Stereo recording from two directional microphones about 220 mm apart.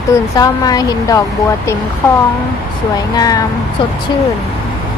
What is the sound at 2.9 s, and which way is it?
Speech, 15° left (ahead or behind).